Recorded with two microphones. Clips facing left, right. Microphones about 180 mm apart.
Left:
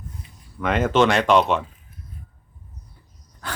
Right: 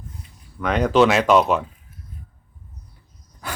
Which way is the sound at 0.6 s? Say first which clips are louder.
Right 2 dB; centre (ahead or behind).